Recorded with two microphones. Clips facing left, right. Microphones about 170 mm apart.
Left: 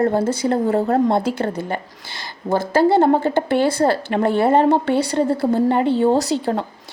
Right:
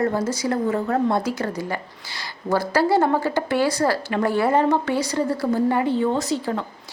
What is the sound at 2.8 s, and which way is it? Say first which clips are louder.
Speech: left 5 dB; 25° left (ahead or behind).